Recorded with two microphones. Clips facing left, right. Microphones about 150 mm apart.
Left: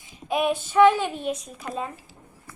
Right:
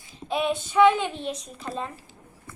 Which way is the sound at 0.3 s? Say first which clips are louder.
Left 2 dB; 10° left (ahead or behind).